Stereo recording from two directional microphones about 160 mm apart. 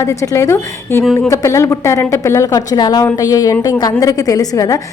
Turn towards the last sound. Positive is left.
turn(degrees=20)  # may be behind; listen again after turning